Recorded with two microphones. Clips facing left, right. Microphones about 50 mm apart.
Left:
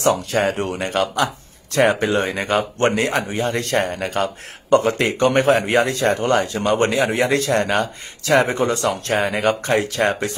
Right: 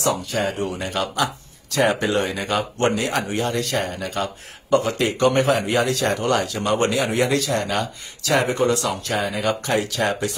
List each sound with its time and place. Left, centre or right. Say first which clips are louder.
0.0 s speech: left 4 dB; left
3.1 s speech: left 2 dB; centre
3.3 s speech: left 3 dB; left
7.4 s speech: left 4 dB; left
8.5 s speech: even; left
8.8 s speech: left 4 dB; left